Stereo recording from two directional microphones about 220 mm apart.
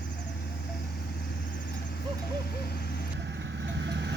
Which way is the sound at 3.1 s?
55° right (ahead or behind).